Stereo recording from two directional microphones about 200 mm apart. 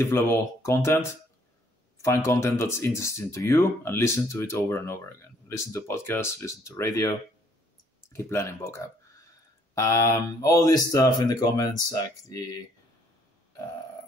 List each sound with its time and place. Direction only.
0.0 s speech: 15° left (ahead or behind)